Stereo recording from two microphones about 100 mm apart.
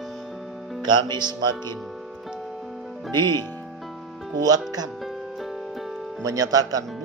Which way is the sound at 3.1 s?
45° right (ahead or behind).